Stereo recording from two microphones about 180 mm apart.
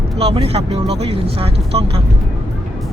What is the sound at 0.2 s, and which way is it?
Speech, 35° right (ahead or behind).